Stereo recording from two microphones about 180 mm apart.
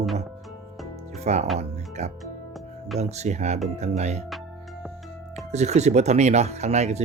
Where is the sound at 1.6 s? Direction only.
40° right (ahead or behind).